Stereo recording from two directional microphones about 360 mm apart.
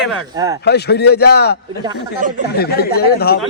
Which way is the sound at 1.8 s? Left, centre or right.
Centre.